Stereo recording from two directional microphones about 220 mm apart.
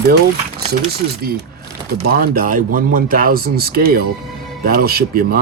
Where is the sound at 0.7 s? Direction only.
45° right (ahead or behind).